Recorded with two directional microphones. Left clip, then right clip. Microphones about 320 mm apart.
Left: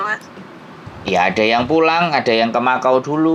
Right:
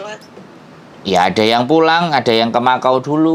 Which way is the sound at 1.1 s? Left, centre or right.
Right.